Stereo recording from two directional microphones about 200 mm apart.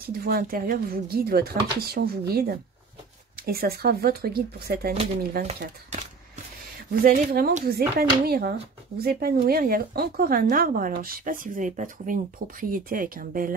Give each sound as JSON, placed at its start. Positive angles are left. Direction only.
{"t": 0.2, "sound": "speech", "side_deg": -50}
{"t": 4.9, "sound": "speech", "side_deg": -30}
{"t": 5.6, "sound": "a sound", "side_deg": -35}
{"t": 7.0, "sound": "speech", "side_deg": -45}